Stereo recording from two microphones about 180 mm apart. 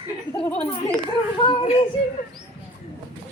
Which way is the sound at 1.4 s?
30° left (ahead or behind).